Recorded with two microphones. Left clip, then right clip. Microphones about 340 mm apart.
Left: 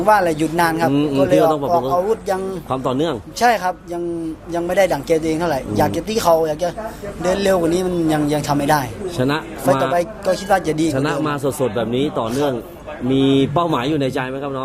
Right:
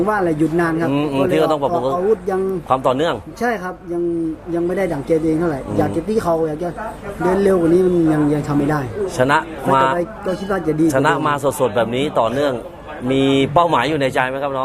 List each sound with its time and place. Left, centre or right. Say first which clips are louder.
0.1 s a man's voice: left 3 dB; left
0.9 s a man's voice: left 2 dB; centre
3.4 s a man's voice: left 6 dB; left
9.1 s a man's voice: right 5 dB; right
10.9 s a man's voice: right 4 dB; right